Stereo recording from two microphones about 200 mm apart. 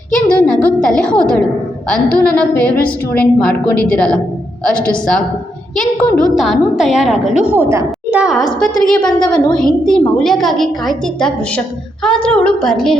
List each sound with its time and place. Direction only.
0.1 s a sound: 5° left (ahead or behind)
2.3 s a woman's voice: 5° left (ahead or behind)
9.0 s a woman's voice: 20° left (ahead or behind)
9.6 s a woman's voice: 5° left (ahead or behind)